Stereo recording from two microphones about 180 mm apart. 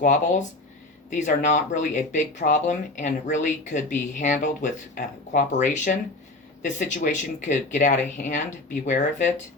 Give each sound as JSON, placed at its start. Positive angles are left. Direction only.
{"t": 0.0, "sound": "speech", "side_deg": 45}